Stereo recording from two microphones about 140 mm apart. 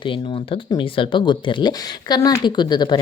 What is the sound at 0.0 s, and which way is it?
Speech, 35° left (ahead or behind).